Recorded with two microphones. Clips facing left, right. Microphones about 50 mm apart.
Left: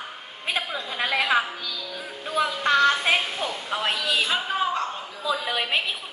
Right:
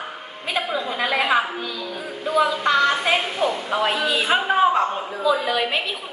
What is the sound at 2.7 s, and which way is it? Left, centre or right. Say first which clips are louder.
Speech: left 2 dB; centre.